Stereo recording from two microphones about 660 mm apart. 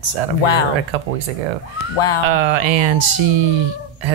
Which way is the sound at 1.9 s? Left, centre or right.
Left.